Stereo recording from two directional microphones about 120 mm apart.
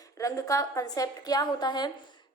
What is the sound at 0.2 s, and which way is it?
A woman's voice, 25° left (ahead or behind).